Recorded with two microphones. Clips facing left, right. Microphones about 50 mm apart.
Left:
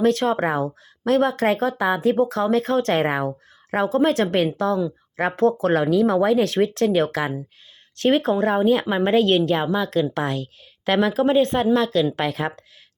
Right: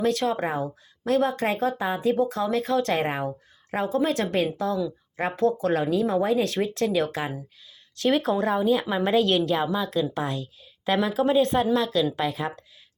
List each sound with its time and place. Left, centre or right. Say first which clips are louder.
0.0 s speech: left 5 dB; left
2.4 s a woman's voice: left 4 dB; left
3.0 s speech: left 5 dB; left
7.1 s a woman's voice: left 5 dB; left
7.9 s a woman's voice: left 4 dB; left
9.0 s a woman's voice: left 4 dB; left
12.1 s speech: left 3 dB; left